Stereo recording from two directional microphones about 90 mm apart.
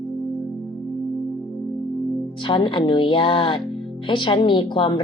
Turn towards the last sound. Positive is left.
turn(degrees=65)  # may be behind; listen again after turning